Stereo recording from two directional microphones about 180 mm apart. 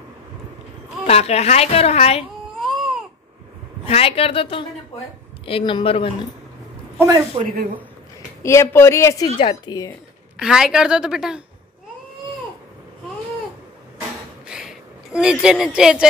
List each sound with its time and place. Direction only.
1.0 s a woman's voice: 35° left (ahead or behind)
3.8 s a woman's voice: 30° left (ahead or behind)
7.0 s a man's voice: 20° right (ahead or behind)
7.4 s a woman's voice: 50° right (ahead or behind)
8.4 s speech: 15° left (ahead or behind)
9.4 s a woman's voice: 30° left (ahead or behind)
10.4 s a woman's voice: 5° right (ahead or behind)
14.5 s a sound: 5° right (ahead or behind)